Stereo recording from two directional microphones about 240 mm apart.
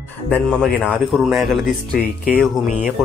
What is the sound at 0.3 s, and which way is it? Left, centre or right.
Speech, centre.